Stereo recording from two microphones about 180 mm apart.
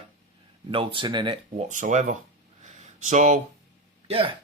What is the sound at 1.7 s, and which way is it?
Speech, 45° right (ahead or behind).